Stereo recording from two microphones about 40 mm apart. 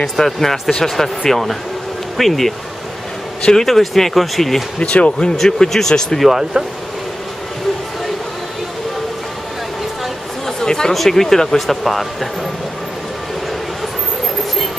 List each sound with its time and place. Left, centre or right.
0.0 s speech: centre
3.5 s speech: centre
4.7 s speech: left
5.4 s speech: centre
6.5 s speech: right
10.6 s speech: centre